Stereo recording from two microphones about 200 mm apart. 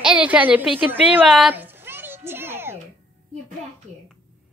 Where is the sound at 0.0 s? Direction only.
5° right (ahead or behind).